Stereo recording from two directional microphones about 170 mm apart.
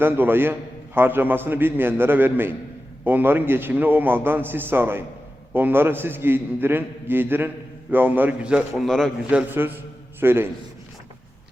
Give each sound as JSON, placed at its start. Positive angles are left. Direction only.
{"t": 0.0, "sound": "a man's voice", "side_deg": -10}
{"t": 9.5, "sound": "a man's voice", "side_deg": -10}